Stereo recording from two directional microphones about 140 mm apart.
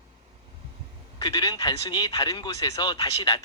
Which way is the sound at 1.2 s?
30° left (ahead or behind).